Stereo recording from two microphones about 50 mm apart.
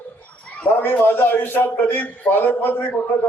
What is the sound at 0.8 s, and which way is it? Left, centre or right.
A man's voice, left.